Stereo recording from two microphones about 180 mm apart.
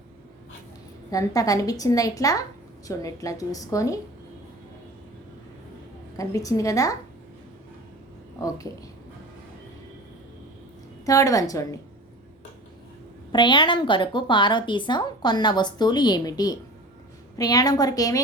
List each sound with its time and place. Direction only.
1.1 s a woman's voice: 20° left (ahead or behind)
6.1 s a woman's voice: 20° left (ahead or behind)
8.4 s a woman's voice: 20° left (ahead or behind)
11.0 s a woman's voice: 20° left (ahead or behind)
13.3 s a woman's voice: 25° left (ahead or behind)